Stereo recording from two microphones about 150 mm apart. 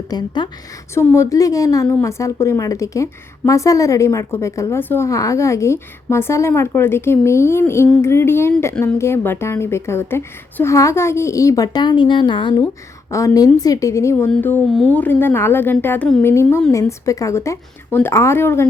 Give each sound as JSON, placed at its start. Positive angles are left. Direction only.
{"t": 0.1, "sound": "a woman's voice", "side_deg": 30}
{"t": 12.6, "sound": "a woman's voice", "side_deg": 20}
{"t": 16.2, "sound": "a woman's voice", "side_deg": 20}